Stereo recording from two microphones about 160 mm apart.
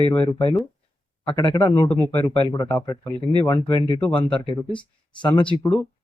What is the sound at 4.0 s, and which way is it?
Speech, 10° left (ahead or behind).